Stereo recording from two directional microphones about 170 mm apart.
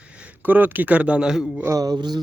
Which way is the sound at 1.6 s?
20° right (ahead or behind).